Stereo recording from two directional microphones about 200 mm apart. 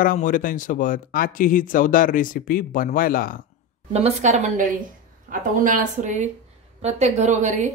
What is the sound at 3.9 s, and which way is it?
Speech, 35° right (ahead or behind).